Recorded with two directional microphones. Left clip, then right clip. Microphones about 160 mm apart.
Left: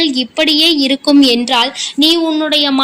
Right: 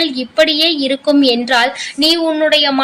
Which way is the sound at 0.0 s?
40° left (ahead or behind).